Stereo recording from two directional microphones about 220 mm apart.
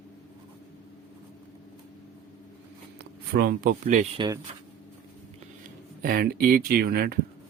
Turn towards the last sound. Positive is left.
turn(degrees=-45)  # may be behind; listen again after turning